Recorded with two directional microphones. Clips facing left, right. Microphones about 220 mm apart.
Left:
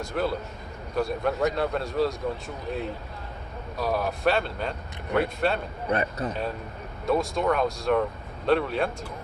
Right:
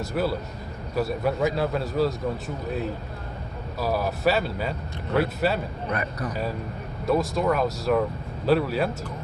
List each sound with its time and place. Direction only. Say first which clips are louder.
0.0 s a man's voice: right 2 dB; 5° right (ahead or behind)
3.8 s a man's voice: right 1 dB; 5° right (ahead or behind)
5.9 s a man's voice: left 4 dB; 25° left (ahead or behind)
7.0 s a man's voice: right 1 dB; centre (ahead or behind)